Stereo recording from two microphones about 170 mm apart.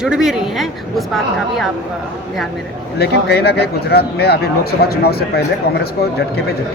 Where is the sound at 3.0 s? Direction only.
70° left (ahead or behind).